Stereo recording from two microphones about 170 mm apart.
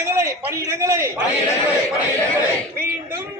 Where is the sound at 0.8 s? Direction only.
15° right (ahead or behind).